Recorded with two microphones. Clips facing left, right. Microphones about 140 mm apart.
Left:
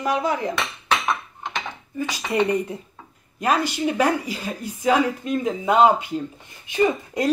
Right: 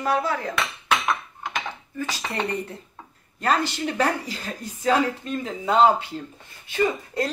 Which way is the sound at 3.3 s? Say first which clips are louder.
Left 2 dB; 10° left (ahead or behind).